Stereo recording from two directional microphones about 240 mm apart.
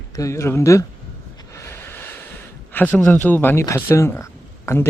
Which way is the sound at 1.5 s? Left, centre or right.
Centre.